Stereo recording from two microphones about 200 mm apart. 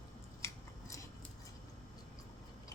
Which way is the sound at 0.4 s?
15° left (ahead or behind).